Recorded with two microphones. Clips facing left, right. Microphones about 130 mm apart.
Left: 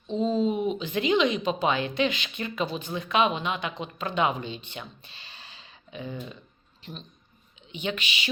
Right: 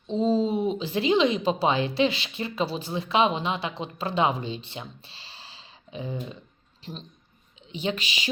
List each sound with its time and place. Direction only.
0.1 s speech: 30° right (ahead or behind)